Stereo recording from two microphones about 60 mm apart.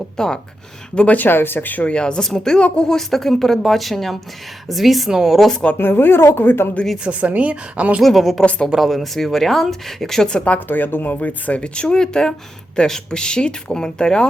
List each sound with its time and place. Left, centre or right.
0.2 s speech: centre
0.9 s speech: left
1.9 s speech: centre
5.7 s speech: left
7.0 s a woman's voice: right
8.0 s speech: centre
8.4 s a woman's voice: left
8.7 s speech: centre
10.7 s speech: left
11.6 s speech: centre